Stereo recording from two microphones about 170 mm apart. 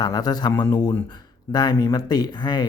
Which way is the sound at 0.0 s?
25° left (ahead or behind).